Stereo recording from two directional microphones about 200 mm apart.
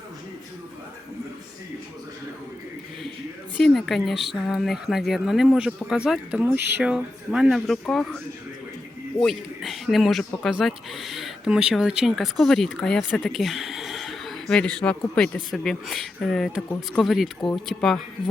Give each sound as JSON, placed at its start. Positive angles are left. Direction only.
{"t": 3.6, "sound": "speech", "side_deg": 0}